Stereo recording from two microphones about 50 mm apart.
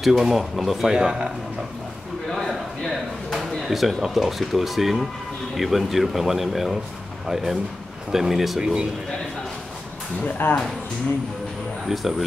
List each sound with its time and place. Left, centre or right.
0.0 s speech: centre
2.3 s speech: centre
8.1 s speech: centre
10.2 s speech: left
11.8 s speech: centre